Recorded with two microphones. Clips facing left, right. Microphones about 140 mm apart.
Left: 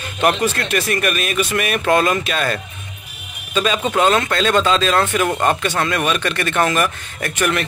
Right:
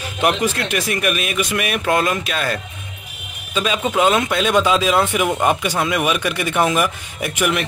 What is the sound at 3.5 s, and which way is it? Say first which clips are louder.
Speech: left 1 dB; 10° right (ahead or behind).